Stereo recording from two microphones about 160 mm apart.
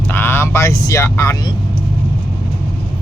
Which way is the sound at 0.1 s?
15° left (ahead or behind).